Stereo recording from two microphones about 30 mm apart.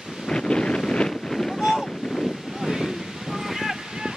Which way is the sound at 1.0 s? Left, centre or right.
Centre.